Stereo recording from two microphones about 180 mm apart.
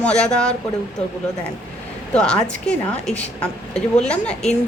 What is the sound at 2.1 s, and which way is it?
A woman's voice, 5° left (ahead or behind).